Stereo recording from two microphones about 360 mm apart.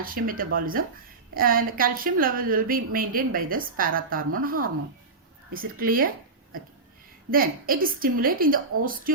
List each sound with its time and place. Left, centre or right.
0.0 s a woman's voice: right
7.3 s a woman's voice: right